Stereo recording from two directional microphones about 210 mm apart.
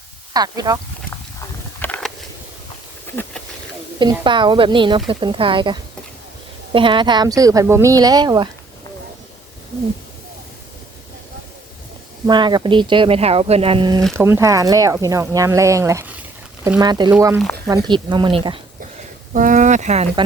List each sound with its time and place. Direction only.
0.3 s speech: 20° right (ahead or behind)
1.8 s a sound: 5° left (ahead or behind)
3.9 s speech: 20° right (ahead or behind)
6.7 s speech: 25° right (ahead or behind)
12.2 s speech: 20° right (ahead or behind)
14.2 s speech: 10° right (ahead or behind)
19.3 s speech: 40° right (ahead or behind)